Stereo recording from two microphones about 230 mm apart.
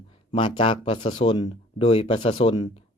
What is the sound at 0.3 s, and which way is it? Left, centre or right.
Speech, left.